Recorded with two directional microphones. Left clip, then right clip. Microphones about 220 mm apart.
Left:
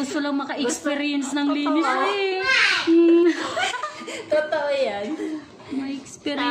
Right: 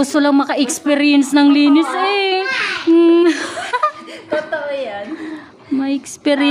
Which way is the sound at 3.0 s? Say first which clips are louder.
Right 6 dB; 50° right (ahead or behind).